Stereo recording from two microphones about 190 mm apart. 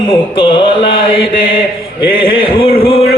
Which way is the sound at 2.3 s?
30° left (ahead or behind).